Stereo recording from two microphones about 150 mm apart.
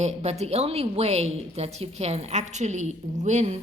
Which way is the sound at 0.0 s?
45° right (ahead or behind).